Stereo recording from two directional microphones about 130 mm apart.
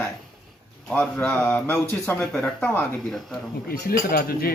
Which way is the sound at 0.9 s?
10° left (ahead or behind).